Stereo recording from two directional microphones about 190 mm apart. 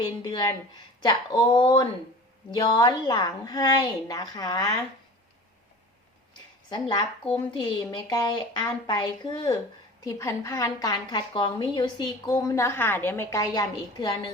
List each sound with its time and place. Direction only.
0.2 s a woman's voice: 20° left (ahead or behind)
6.7 s a woman's voice: 25° left (ahead or behind)